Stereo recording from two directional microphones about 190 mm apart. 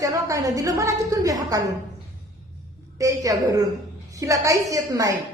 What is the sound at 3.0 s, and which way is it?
A woman's voice, 15° right (ahead or behind).